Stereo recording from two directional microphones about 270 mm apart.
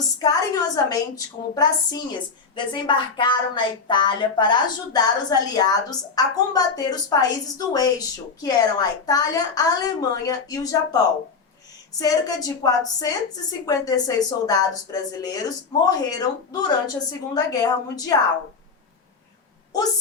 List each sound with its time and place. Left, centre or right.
0.2 s a woman's voice: centre